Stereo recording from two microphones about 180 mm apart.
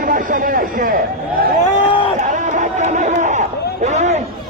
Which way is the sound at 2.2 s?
45° right (ahead or behind).